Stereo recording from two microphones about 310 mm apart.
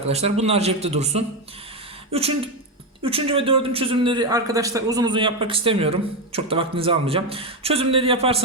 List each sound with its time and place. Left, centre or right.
0.1 s a man's voice: centre